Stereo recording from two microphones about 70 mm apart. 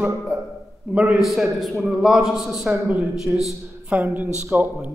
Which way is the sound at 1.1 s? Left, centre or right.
Centre.